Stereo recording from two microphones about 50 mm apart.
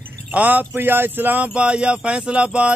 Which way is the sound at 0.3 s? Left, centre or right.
Right.